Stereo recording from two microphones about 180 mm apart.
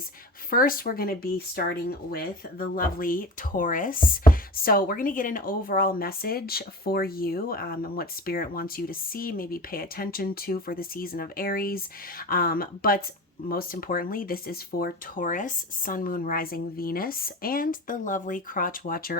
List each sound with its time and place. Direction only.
0.5 s speech: 50° left (ahead or behind)